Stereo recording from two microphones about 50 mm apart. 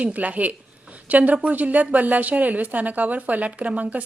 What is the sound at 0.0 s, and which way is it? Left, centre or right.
A woman's voice, right.